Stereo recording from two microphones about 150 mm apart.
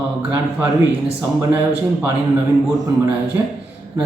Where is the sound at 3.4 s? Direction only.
20° right (ahead or behind).